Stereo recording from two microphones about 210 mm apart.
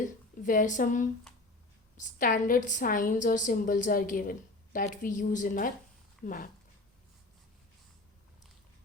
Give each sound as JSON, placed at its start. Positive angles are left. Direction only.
{"t": 0.4, "sound": "a woman's voice", "side_deg": 40}